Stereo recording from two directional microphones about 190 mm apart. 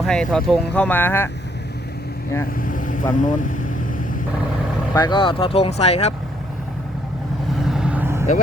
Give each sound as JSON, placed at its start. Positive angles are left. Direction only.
{"t": 0.0, "sound": "speech", "side_deg": 0}
{"t": 2.6, "sound": "speech", "side_deg": 45}
{"t": 4.9, "sound": "speech", "side_deg": 25}
{"t": 7.5, "sound": "vehicle", "side_deg": 0}